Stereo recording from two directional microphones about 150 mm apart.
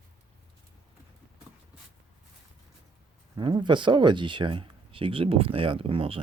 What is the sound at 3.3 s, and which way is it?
Speech, 30° right (ahead or behind).